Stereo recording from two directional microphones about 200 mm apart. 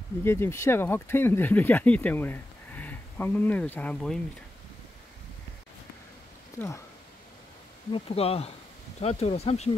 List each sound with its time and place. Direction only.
0.2 s speech: 10° left (ahead or behind)
7.9 s speech: 30° left (ahead or behind)